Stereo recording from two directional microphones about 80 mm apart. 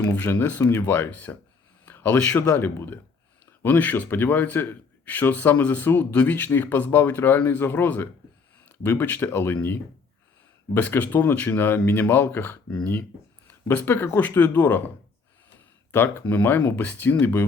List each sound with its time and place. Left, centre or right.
0.0 s a man's voice: left
1.8 s a sound: left
2.5 s a man's voice: left
10.8 s a man's voice: left